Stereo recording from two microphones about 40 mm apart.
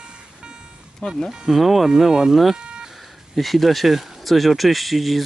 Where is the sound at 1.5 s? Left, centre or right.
Centre.